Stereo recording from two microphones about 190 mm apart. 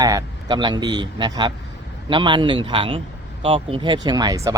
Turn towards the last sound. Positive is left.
turn(degrees=-15)  # may be behind; listen again after turning